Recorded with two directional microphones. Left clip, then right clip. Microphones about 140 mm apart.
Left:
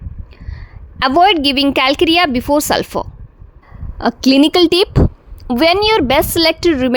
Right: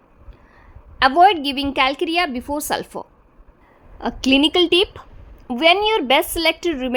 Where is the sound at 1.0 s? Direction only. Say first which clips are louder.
Left 3 dB; 40° left (ahead or behind); by 5.0 s 55° left (ahead or behind).